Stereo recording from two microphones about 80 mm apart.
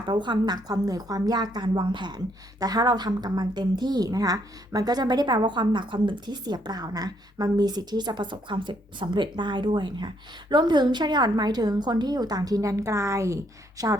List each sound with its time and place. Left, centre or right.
0.1 s a woman's voice: right